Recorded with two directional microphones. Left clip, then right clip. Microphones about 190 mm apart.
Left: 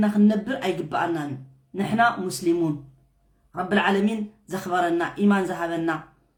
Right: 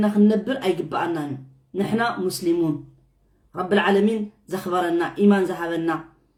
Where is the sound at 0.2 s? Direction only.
15° left (ahead or behind).